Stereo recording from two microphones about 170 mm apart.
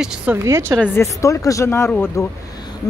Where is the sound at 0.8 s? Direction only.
15° left (ahead or behind).